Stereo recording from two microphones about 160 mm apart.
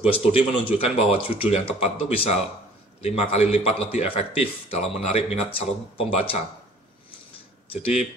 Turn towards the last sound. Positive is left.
turn(degrees=35)  # may be behind; listen again after turning